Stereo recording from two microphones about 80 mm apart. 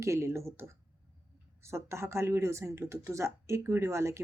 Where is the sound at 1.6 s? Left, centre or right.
Right.